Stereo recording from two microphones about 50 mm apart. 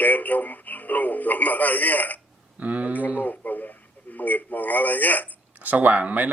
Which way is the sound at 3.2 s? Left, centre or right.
Left.